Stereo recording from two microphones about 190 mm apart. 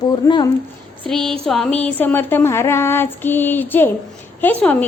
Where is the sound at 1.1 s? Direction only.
Centre (ahead or behind).